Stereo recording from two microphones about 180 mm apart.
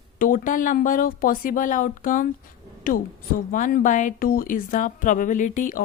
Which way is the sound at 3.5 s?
45° left (ahead or behind).